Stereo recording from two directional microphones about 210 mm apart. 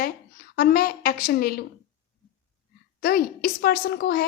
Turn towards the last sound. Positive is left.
turn(degrees=45)  # may be behind; listen again after turning